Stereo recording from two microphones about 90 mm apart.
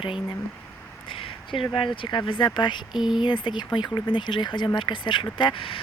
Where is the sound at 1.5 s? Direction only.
65° left (ahead or behind).